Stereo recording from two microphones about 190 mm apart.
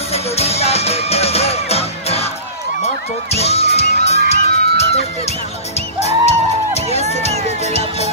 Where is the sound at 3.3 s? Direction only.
35° left (ahead or behind).